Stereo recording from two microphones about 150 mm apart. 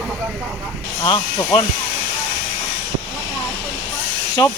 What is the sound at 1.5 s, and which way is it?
Speech, 30° left (ahead or behind).